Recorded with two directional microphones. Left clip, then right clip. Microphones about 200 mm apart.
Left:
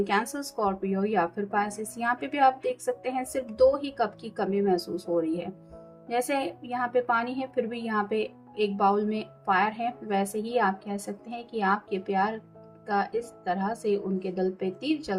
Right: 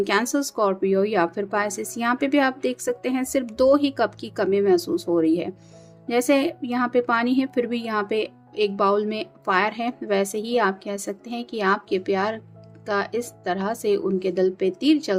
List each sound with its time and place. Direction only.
0.0 s a woman's voice: 50° right (ahead or behind)